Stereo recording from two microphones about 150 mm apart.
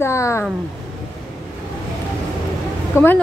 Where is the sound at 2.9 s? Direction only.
15° left (ahead or behind).